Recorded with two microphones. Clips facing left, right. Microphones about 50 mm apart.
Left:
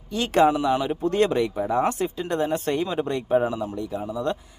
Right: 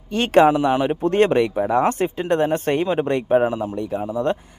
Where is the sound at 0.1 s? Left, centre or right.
Right.